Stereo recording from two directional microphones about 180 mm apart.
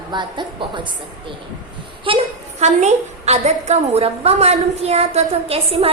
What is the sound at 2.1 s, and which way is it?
A woman's voice, 30° right (ahead or behind).